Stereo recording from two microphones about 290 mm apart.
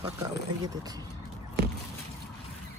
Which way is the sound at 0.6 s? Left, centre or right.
Centre.